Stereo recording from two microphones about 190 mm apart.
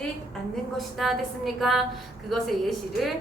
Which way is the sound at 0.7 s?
Centre (ahead or behind).